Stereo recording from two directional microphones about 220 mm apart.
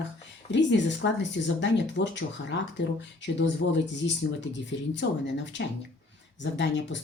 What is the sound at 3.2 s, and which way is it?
Speech, 55° left (ahead or behind).